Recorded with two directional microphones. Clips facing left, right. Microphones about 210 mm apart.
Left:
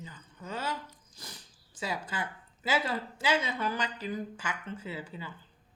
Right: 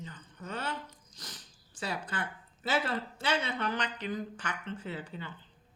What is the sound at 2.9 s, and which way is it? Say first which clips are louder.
Speech: left 2 dB; 10° left (ahead or behind).